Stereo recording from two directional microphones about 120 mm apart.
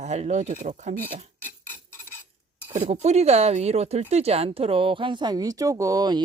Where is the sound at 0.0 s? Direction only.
70° right (ahead or behind).